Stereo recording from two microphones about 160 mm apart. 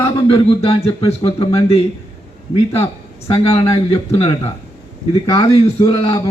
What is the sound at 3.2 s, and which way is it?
Speech, 35° left (ahead or behind).